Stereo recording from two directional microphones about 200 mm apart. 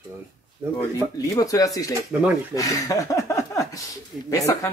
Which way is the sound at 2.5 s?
15° left (ahead or behind).